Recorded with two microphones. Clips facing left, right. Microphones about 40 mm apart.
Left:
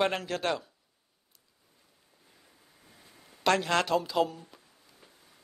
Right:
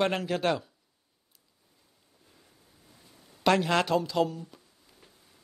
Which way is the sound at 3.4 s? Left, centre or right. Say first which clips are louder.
Right 2 dB; centre.